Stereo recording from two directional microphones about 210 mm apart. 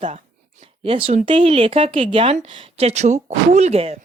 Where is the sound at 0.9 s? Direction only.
25° right (ahead or behind).